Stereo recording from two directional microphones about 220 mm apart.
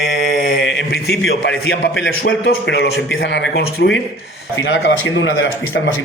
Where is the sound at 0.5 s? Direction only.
55° left (ahead or behind).